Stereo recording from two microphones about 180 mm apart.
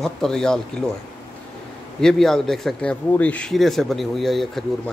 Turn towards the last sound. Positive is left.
turn(degrees=0)  # may be behind; listen again after turning